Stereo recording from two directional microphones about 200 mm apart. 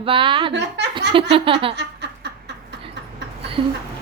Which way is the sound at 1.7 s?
55° right (ahead or behind).